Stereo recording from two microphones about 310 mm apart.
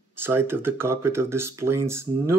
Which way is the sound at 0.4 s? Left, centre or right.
Centre.